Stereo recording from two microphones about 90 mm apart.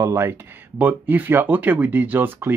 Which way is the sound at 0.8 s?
20° right (ahead or behind).